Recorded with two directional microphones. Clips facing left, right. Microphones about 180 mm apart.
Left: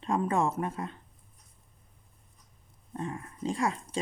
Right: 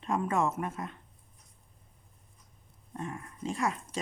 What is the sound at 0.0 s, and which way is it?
Speech, 30° left (ahead or behind).